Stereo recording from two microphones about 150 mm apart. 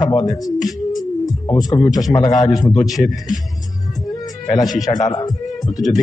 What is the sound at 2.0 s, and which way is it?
Speech, 25° left (ahead or behind).